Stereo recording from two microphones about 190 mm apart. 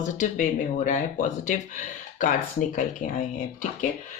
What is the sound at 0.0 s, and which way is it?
Speech, 40° left (ahead or behind).